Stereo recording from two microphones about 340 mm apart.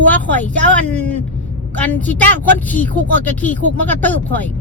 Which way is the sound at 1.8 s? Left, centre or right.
Centre.